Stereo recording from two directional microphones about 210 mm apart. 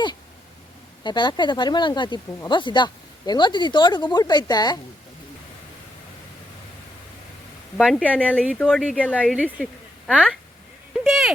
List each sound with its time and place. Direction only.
1.0 s speech: 20° left (ahead or behind)
7.8 s speech: centre (ahead or behind)
11.0 s owl: centre (ahead or behind)